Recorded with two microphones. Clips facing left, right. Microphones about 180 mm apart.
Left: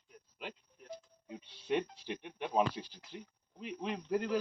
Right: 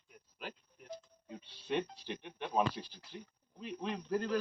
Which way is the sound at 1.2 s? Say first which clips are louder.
Left 3 dB; 10° left (ahead or behind).